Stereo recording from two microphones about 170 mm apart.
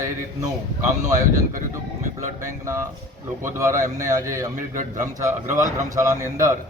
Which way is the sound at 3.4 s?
20° right (ahead or behind).